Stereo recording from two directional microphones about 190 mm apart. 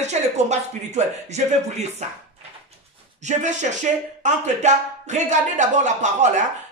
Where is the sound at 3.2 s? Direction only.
40° right (ahead or behind).